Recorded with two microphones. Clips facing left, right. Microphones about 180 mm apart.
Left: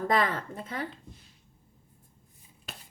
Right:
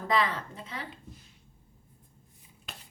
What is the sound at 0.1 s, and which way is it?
Speech, 50° left (ahead or behind).